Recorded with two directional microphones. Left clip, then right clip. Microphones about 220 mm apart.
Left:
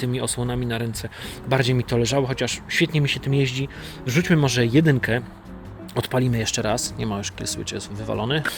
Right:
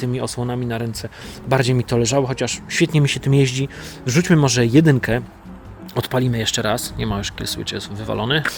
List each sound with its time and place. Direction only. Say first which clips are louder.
0.0 s speech: right 2 dB; 10° right (ahead or behind)